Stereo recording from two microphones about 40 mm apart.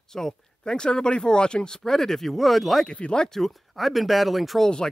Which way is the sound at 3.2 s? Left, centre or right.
Centre.